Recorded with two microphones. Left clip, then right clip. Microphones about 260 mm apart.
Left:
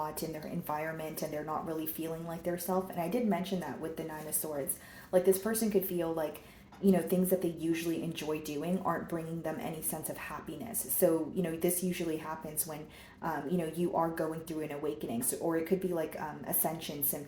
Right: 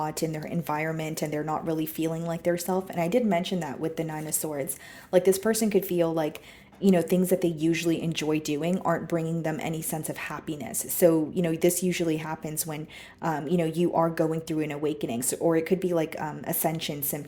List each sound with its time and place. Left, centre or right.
0.0 s speech: right
5.1 s speech: right